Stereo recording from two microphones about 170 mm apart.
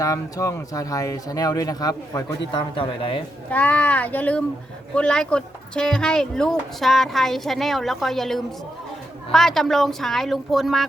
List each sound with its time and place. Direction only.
0.0 s a man's voice: 20° left (ahead or behind)
3.5 s speech: 10° left (ahead or behind)